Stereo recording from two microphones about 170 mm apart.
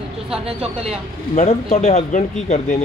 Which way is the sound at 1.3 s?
45° left (ahead or behind).